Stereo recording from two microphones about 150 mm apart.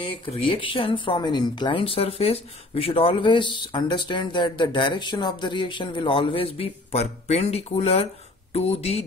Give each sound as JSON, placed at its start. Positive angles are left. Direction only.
{"t": 0.0, "sound": "speech", "side_deg": 35}